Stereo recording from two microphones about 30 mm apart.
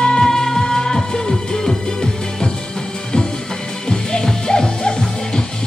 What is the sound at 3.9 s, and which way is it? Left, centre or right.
Music, left.